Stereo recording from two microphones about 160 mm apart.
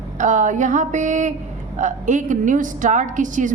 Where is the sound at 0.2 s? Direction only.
50° right (ahead or behind).